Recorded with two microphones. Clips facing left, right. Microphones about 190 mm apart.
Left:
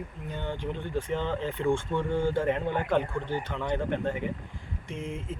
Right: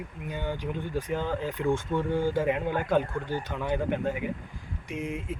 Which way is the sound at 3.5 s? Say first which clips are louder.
Right 2 dB; 10° right (ahead or behind).